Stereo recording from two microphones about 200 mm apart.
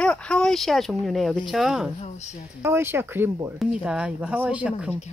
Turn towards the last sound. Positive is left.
turn(degrees=-5)  # may be behind; listen again after turning